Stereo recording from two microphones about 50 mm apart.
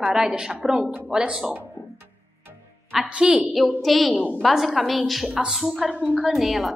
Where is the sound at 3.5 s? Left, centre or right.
Centre.